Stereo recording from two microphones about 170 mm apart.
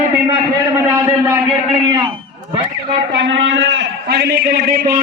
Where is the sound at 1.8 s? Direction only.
25° right (ahead or behind).